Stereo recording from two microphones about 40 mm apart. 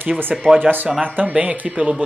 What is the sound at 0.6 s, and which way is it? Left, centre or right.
Speech, right.